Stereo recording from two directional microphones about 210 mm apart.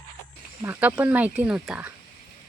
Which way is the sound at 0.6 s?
10° right (ahead or behind).